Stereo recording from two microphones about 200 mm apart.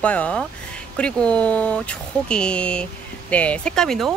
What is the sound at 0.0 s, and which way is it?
Speech, 5° left (ahead or behind).